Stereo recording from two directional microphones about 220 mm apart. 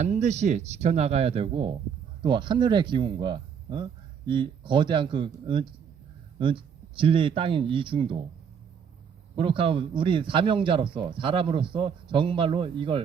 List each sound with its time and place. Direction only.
0.0 s a man's voice: 35° right (ahead or behind)
9.3 s a man's voice: 25° right (ahead or behind)